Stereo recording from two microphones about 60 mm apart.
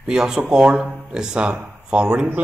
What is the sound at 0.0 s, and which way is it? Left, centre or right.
Speech, centre.